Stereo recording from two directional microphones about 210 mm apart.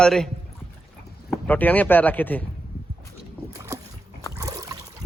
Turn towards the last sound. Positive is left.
turn(degrees=-15)  # may be behind; listen again after turning